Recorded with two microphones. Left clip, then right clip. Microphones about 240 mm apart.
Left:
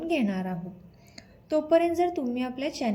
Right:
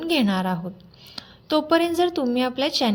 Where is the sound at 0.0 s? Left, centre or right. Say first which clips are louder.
Right 6 dB; right.